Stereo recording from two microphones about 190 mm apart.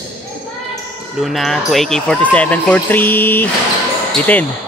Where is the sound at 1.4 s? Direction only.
Centre (ahead or behind).